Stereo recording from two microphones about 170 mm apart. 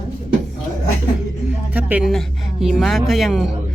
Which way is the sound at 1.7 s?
10° right (ahead or behind).